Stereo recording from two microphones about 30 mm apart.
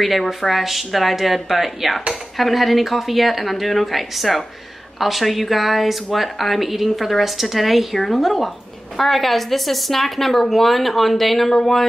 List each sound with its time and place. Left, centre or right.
0.3 s a woman's voice: centre